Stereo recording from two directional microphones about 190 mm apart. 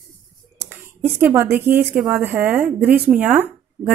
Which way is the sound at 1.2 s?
10° right (ahead or behind).